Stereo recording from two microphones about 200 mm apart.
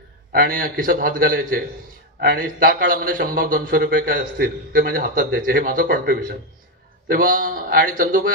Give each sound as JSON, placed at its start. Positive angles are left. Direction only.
{"t": 0.3, "sound": "a man's voice", "side_deg": -45}